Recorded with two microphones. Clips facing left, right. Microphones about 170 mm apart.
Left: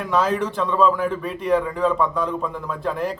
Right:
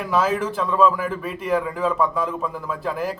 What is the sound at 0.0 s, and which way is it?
A man's voice, 5° right (ahead or behind).